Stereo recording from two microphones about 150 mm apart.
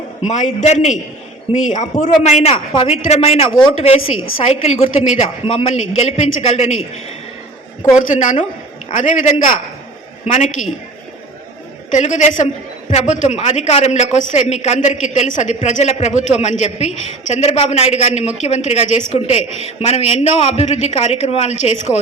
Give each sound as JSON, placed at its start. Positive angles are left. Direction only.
{"t": 0.3, "sound": "a woman's voice", "side_deg": 55}
{"t": 7.9, "sound": "a man's voice", "side_deg": 60}
{"t": 11.9, "sound": "a man's voice", "side_deg": 55}